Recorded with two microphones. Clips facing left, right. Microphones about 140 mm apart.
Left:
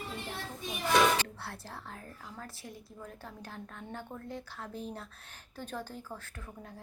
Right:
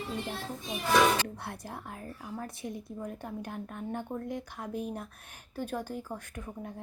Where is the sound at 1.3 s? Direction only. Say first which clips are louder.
Right 4 dB; 15° right (ahead or behind).